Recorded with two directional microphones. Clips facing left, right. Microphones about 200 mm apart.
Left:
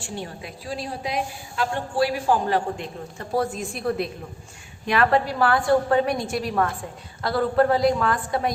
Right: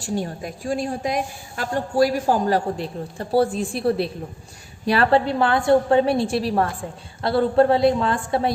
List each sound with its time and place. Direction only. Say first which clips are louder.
0.0 s a woman's voice: right 7 dB; 40° right (ahead or behind)